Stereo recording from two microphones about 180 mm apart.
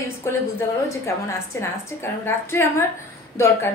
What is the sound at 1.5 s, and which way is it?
A woman's voice, 15° left (ahead or behind).